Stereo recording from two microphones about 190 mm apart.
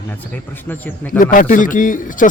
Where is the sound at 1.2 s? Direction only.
45° left (ahead or behind).